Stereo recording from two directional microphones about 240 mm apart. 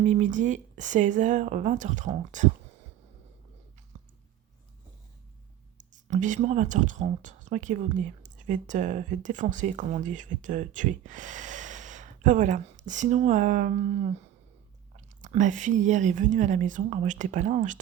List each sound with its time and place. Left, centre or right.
0.0 s speech: right
3.9 s a sound: right
5.7 s speech: right